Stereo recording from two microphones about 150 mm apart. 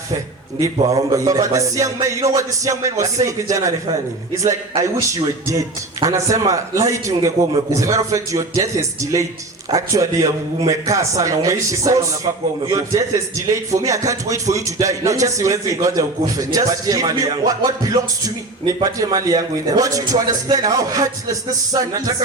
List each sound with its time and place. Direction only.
0.6 s speech: 20° right (ahead or behind)
13.7 s speech: 20° right (ahead or behind)